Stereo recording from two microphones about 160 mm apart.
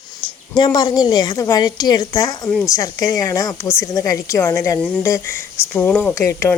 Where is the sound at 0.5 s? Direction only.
25° left (ahead or behind).